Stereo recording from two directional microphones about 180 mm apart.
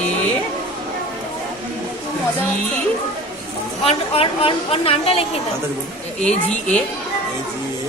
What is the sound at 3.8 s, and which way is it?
A woman's voice, 30° left (ahead or behind).